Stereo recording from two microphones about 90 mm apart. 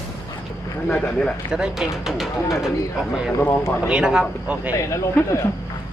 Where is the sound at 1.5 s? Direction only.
5° right (ahead or behind).